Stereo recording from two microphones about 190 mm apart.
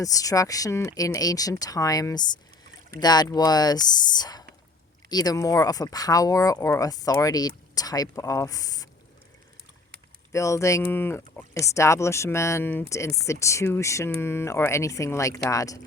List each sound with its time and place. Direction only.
0.0 s speech: 20° left (ahead or behind)
10.3 s speech: 15° left (ahead or behind)